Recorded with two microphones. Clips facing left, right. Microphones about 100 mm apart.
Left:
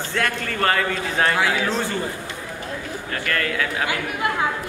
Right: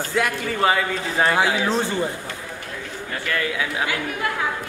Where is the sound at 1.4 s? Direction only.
20° right (ahead or behind).